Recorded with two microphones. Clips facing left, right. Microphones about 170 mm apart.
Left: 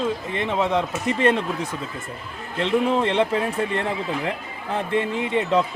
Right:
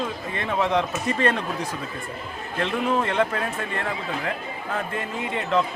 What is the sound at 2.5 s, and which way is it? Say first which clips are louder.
Speech: left 3 dB; 25° left (ahead or behind).